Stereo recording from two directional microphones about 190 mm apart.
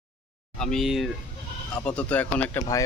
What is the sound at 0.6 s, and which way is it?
Speech, centre (ahead or behind).